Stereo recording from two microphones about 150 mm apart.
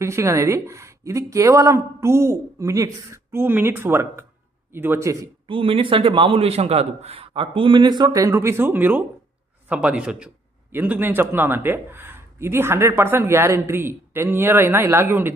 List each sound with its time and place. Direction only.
0.0 s a man's voice: 20° right (ahead or behind)
5.5 s a man's voice: 35° right (ahead or behind); by 15.3 s 15° right (ahead or behind)